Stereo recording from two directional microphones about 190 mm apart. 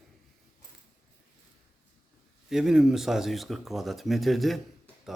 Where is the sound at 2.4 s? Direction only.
Centre (ahead or behind).